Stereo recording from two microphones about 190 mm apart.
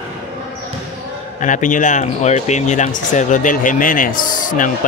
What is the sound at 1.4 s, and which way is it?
Speech, 40° left (ahead or behind).